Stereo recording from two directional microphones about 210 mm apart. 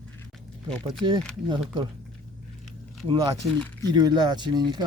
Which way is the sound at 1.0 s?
20° right (ahead or behind).